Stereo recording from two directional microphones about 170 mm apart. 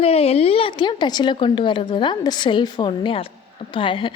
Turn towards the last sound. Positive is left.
turn(degrees=30)  # may be behind; listen again after turning